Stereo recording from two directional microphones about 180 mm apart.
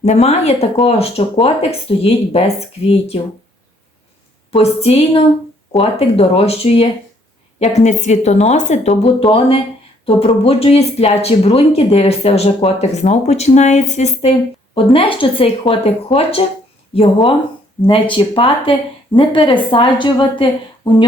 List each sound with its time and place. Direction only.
0.0 s speech: 35° left (ahead or behind)
4.5 s a woman's voice: 35° left (ahead or behind)